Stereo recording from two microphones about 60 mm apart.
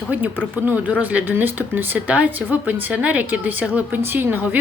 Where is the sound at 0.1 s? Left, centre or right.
Right.